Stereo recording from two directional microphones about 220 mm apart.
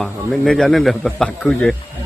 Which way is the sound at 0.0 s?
Centre (ahead or behind).